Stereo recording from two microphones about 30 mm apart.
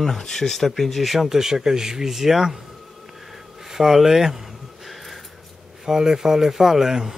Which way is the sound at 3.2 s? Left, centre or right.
Centre.